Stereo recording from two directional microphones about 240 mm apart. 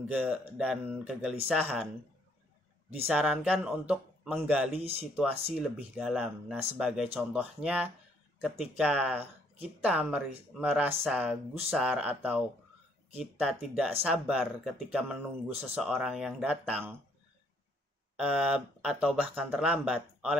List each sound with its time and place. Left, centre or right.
0.0 s speech: centre
3.1 s speech: centre
18.2 s speech: centre